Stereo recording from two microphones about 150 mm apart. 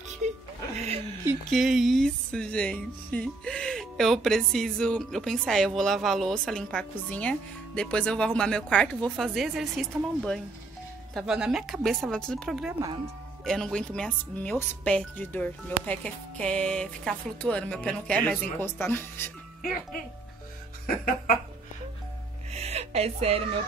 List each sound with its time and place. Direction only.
1.5 s speech: centre (ahead or behind); by 19.3 s 15° left (ahead or behind)
20.8 s speech: 65° left (ahead or behind)
22.5 s a sound: 45° right (ahead or behind)